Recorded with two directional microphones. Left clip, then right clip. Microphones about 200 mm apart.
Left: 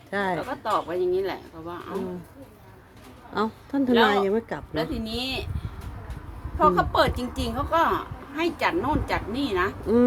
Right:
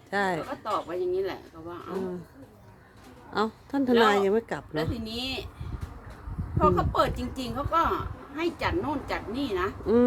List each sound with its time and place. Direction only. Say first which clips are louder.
0.1 s speech: left 1 dB; 5° right (ahead or behind)
0.5 s a woman's voice: left 4 dB; 20° left (ahead or behind)
3.3 s a woman's voice: left 2 dB; 5° right (ahead or behind)
4.7 s a woman's voice: left 4 dB; 15° left (ahead or behind)
6.6 s a woman's voice: left 4 dB; 20° left (ahead or behind)
9.8 s a woman's voice: even; 5° right (ahead or behind)